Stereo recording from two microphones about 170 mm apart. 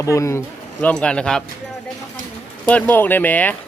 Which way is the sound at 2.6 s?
10° left (ahead or behind).